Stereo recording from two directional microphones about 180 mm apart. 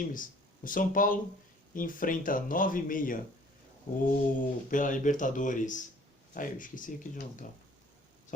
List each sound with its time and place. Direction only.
0.0 s speech: 50° left (ahead or behind)